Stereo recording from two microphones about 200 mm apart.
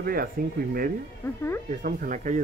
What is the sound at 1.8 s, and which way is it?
Speech, 40° right (ahead or behind).